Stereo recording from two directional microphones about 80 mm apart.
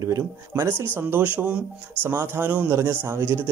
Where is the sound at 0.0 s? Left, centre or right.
Right.